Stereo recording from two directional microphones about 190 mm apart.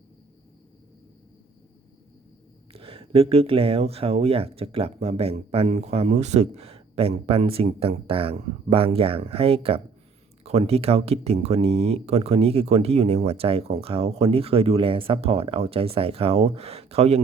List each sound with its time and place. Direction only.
2.7 s speech: 30° right (ahead or behind)